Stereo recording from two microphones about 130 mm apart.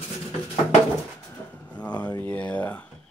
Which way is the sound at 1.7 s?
10° left (ahead or behind).